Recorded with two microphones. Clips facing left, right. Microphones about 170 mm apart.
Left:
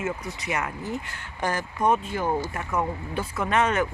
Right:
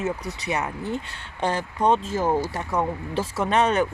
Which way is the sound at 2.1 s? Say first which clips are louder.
Right 3 dB; 35° right (ahead or behind).